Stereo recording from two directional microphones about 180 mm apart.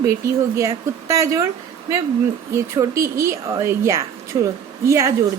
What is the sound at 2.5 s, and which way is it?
A woman's voice, 15° right (ahead or behind).